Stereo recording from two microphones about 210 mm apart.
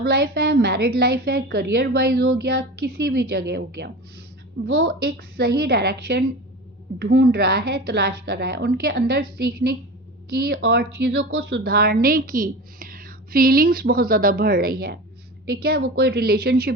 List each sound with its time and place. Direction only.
0.0 s a woman's voice: 45° right (ahead or behind)
10.2 s a woman's voice: 50° right (ahead or behind)